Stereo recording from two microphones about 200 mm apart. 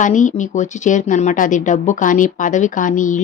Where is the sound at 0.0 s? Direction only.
40° left (ahead or behind).